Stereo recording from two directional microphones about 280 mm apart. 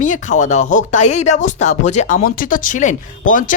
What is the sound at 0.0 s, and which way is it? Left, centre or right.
Speech, left.